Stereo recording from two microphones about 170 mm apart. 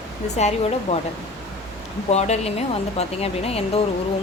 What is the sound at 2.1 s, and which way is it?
Speech, 40° left (ahead or behind).